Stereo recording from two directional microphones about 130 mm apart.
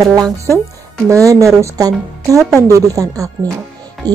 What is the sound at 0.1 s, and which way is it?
Speech, 25° right (ahead or behind).